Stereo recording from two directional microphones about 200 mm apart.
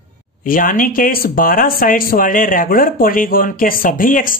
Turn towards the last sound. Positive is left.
turn(degrees=45)  # may be behind; listen again after turning